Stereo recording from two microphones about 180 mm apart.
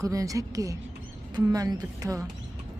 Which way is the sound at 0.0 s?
20° right (ahead or behind).